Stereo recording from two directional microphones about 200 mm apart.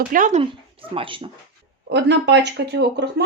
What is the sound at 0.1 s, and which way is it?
Speech, 40° right (ahead or behind).